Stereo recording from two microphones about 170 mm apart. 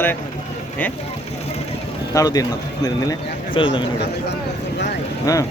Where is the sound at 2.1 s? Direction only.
20° left (ahead or behind).